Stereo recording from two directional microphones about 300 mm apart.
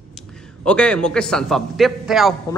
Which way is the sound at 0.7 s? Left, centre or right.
Centre.